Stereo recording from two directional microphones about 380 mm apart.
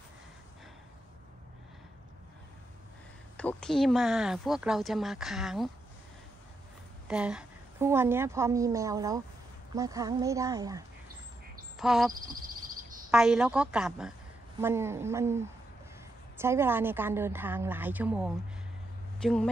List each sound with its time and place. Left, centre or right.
3.3 s speech: centre
7.1 s a woman's voice: centre
11.8 s speech: centre
12.1 s a sound: right
13.1 s a woman's voice: centre